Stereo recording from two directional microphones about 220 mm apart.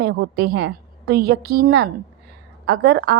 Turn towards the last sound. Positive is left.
turn(degrees=-45)  # may be behind; listen again after turning